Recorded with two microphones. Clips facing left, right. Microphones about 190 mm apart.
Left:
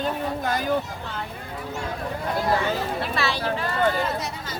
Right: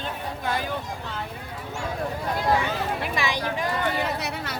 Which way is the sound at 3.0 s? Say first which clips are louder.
Left 1 dB; 15° right (ahead or behind).